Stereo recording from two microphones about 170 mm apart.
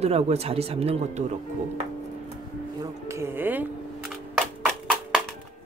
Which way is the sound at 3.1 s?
15° right (ahead or behind).